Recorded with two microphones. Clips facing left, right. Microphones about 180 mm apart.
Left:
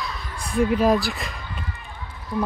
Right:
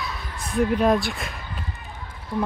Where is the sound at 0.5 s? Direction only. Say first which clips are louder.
Left 1 dB; centre (ahead or behind).